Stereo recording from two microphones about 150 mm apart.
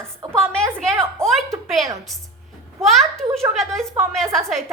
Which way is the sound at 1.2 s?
15° right (ahead or behind).